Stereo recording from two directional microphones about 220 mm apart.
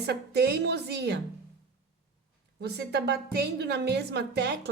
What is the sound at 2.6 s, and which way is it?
A woman's voice, 50° right (ahead or behind).